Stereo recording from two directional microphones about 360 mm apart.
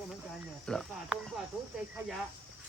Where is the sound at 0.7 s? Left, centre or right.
Centre.